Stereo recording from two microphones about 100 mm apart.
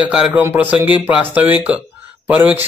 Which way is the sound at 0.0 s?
10° right (ahead or behind).